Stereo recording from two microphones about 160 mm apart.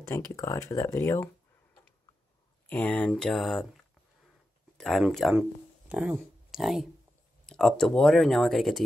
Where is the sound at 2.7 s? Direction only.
10° left (ahead or behind).